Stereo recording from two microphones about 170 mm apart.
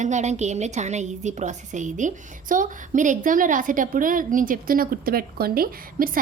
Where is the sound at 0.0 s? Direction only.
45° right (ahead or behind).